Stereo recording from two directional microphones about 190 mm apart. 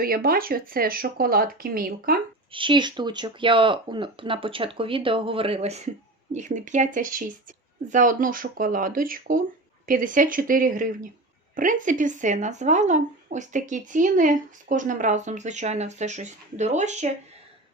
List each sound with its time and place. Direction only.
0.0 s speech: 50° right (ahead or behind)
2.5 s speech: 25° right (ahead or behind)